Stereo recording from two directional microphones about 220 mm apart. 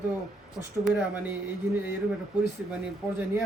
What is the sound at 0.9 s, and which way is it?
Speech, 5° right (ahead or behind).